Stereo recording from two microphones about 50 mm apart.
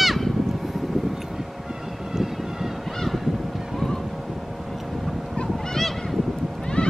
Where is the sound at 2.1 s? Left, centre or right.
Centre.